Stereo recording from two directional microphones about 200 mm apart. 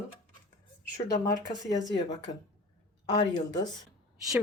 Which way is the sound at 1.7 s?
20° left (ahead or behind).